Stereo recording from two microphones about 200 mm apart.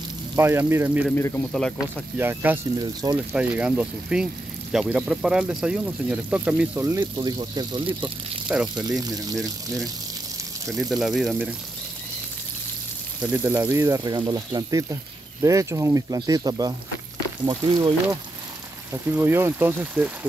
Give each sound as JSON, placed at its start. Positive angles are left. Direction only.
{"t": 0.4, "sound": "speech", "side_deg": -10}
{"t": 1.1, "sound": "speech", "side_deg": 10}
{"t": 2.1, "sound": "speech", "side_deg": -10}
{"t": 2.8, "sound": "speech", "side_deg": -20}
{"t": 3.3, "sound": "speech", "side_deg": -5}
{"t": 8.5, "sound": "speech", "side_deg": -5}
{"t": 9.0, "sound": "speech", "side_deg": -20}
{"t": 10.8, "sound": "speech", "side_deg": 0}
{"t": 13.2, "sound": "speech", "side_deg": -10}
{"t": 18.9, "sound": "speech", "side_deg": -10}